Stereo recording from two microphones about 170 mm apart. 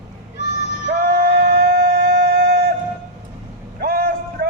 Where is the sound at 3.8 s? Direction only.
65° right (ahead or behind).